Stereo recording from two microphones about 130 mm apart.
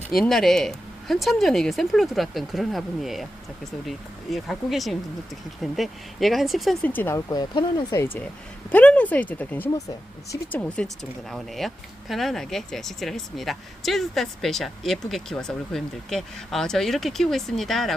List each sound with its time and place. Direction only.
0.2 s speech: centre (ahead or behind)
6.8 s speech: 15° left (ahead or behind)
7.3 s speech: 35° left (ahead or behind)
7.9 s speech: 15° left (ahead or behind)